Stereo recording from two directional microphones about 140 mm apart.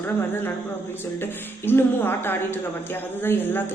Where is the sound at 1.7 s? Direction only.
15° left (ahead or behind).